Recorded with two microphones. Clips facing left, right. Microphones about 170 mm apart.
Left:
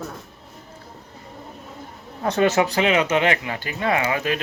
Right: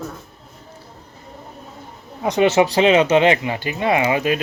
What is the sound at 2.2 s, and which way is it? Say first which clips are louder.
Speech: right 3 dB; 15° right (ahead or behind).